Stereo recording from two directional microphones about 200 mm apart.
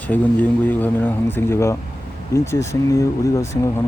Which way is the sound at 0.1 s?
10° left (ahead or behind).